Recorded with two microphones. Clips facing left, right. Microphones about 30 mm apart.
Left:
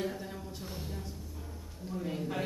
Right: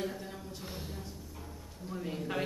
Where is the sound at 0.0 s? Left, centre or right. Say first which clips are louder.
Left 1 dB; centre.